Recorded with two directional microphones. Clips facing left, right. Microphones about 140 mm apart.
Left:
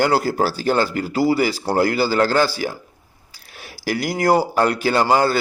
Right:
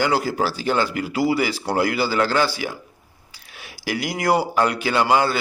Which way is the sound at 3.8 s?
40° left (ahead or behind).